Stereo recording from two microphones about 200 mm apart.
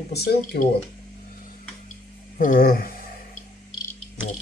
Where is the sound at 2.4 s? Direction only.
45° left (ahead or behind).